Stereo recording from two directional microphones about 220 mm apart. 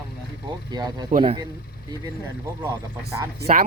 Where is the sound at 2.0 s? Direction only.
15° right (ahead or behind).